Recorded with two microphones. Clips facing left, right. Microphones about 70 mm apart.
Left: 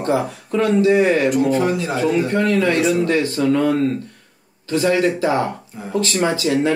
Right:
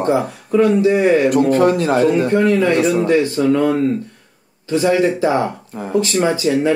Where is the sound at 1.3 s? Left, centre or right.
Right.